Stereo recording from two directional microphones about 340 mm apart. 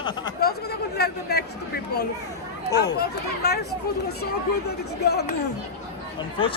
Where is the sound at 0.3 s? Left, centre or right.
Left.